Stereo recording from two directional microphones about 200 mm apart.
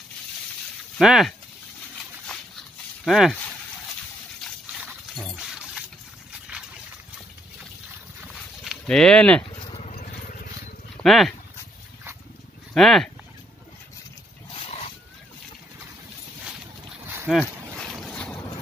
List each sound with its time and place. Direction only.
0.9 s speech: centre (ahead or behind)
3.1 s speech: centre (ahead or behind)
4.7 s a sound: centre (ahead or behind)
8.3 s livestock: 5° left (ahead or behind)
9.6 s vehicle: 30° left (ahead or behind)
11.0 s speech: centre (ahead or behind)
12.7 s speech: centre (ahead or behind)
14.5 s a sound: 30° left (ahead or behind)
17.3 s speech: 5° right (ahead or behind)
17.9 s boat: 5° left (ahead or behind)